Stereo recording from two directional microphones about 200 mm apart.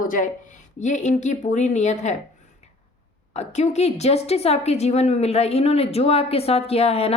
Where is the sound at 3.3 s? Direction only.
35° left (ahead or behind).